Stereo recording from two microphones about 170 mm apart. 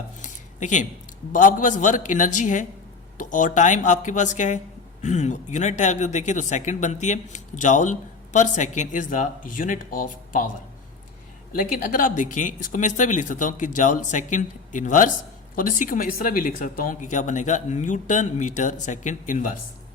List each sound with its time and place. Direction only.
0.2 s dishes: 45° left (ahead or behind)
1.3 s speech: 50° left (ahead or behind)
11.5 s speech: 55° left (ahead or behind)